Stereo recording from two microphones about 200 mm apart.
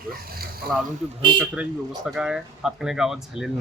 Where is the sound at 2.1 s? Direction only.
5° right (ahead or behind).